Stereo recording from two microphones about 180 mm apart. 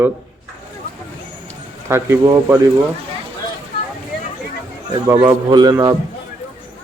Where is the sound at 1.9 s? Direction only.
15° right (ahead or behind).